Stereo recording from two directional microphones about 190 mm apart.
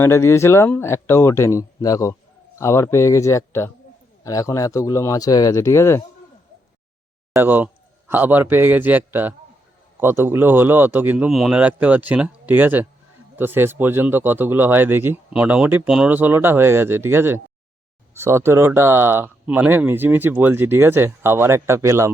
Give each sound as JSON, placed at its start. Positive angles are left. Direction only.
{"t": 0.0, "sound": "speech", "side_deg": 15}
{"t": 7.3, "sound": "a man's voice", "side_deg": -10}